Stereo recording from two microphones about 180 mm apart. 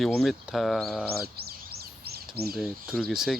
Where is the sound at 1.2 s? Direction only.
55° right (ahead or behind).